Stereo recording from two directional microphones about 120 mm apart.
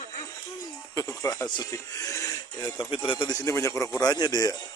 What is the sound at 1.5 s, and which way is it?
Speech, 35° left (ahead or behind).